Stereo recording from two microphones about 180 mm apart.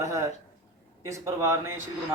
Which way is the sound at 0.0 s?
15° right (ahead or behind).